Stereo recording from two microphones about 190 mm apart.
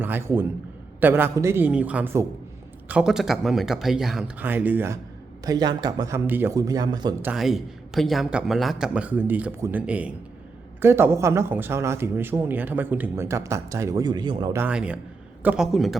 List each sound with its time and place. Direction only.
0.0 s speech: 10° right (ahead or behind)
5.5 s a man's voice: 20° right (ahead or behind)
7.2 s speech: 5° right (ahead or behind); by 14.6 s 25° right (ahead or behind)
14.6 s speech: 5° right (ahead or behind)